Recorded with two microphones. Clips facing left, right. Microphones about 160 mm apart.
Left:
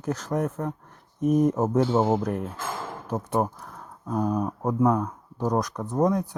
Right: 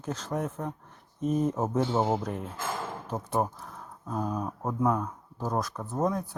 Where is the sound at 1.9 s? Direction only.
25° left (ahead or behind).